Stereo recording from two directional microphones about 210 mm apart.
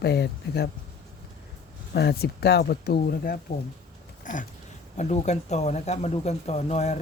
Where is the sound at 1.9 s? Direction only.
50° left (ahead or behind).